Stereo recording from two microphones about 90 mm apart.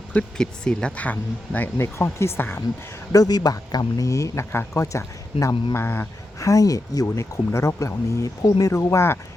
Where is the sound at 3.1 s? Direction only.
45° left (ahead or behind); by 6.1 s 25° left (ahead or behind).